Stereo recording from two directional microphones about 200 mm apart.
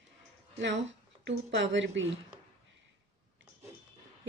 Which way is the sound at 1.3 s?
65° right (ahead or behind).